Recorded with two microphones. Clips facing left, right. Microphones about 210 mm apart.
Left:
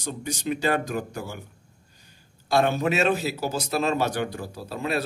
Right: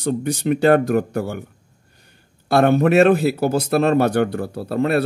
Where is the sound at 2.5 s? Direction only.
60° right (ahead or behind).